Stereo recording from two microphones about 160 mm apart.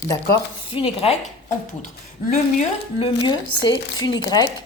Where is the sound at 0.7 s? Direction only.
35° left (ahead or behind).